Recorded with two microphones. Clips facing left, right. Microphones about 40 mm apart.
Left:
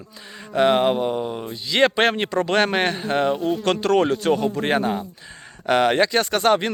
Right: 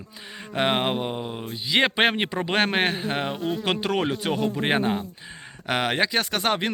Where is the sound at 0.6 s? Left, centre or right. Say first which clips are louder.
Left 6 dB; right.